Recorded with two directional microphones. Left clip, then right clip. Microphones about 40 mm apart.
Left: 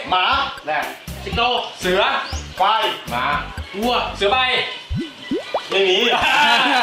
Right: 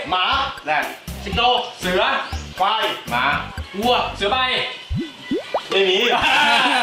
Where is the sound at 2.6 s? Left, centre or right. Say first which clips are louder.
Left 2 dB; centre.